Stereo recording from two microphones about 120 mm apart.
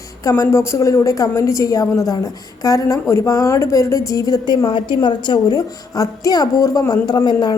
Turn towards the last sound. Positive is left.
turn(degrees=35)  # may be behind; listen again after turning